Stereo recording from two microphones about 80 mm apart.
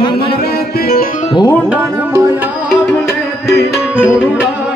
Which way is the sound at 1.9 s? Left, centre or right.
Right.